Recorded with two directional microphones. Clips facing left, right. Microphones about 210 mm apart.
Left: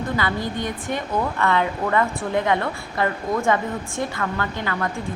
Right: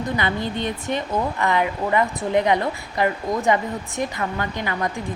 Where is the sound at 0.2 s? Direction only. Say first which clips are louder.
Right 1 dB; 20° right (ahead or behind).